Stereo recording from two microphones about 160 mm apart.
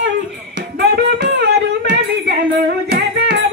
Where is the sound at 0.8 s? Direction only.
90° right.